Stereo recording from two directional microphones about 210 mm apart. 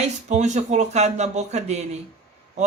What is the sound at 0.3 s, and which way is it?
Speech, 35° right (ahead or behind).